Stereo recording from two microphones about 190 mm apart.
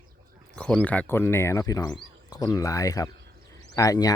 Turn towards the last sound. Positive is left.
turn(degrees=20)  # may be behind; listen again after turning